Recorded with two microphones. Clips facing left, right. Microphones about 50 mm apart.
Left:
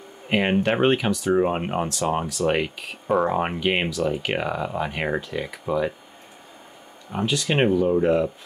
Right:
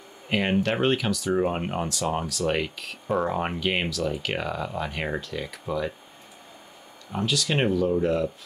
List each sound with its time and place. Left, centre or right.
0.3 s speech: centre
7.1 s speech: left